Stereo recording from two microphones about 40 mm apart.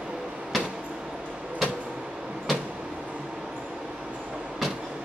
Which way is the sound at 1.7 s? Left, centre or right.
Right.